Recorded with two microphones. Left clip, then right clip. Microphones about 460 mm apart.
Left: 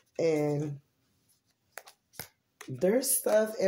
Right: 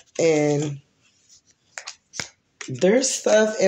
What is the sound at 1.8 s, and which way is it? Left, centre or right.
Finger snapping, left.